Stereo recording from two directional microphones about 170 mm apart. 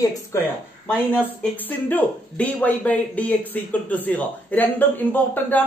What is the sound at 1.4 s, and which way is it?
Speech, 10° left (ahead or behind).